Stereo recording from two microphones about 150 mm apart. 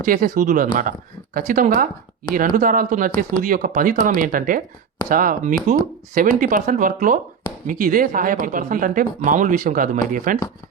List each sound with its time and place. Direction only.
0.0 s speech: 65° right (ahead or behind)